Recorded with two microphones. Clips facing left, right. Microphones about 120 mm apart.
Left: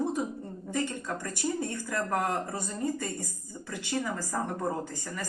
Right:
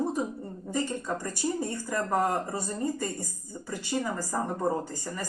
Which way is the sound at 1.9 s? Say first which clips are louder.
Right 3 dB; 25° right (ahead or behind).